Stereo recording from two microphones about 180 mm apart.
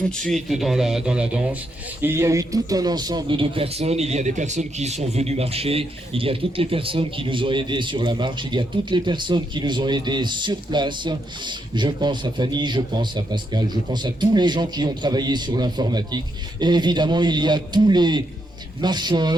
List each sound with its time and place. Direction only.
0.2 s a man's voice: centre (ahead or behind); by 19.4 s 25° right (ahead or behind)